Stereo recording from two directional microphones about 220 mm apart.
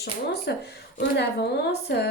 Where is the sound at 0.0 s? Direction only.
50° left (ahead or behind).